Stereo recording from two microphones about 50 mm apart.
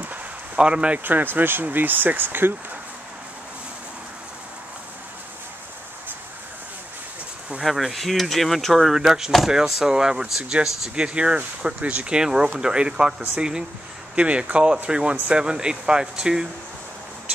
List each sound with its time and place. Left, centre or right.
0.6 s speech: right
1.0 s speech: right
7.6 s speech: centre
8.9 s speech: centre
11.0 s speech: right